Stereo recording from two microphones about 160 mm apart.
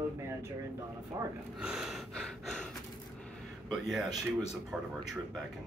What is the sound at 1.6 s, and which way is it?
Gasp, 5° right (ahead or behind).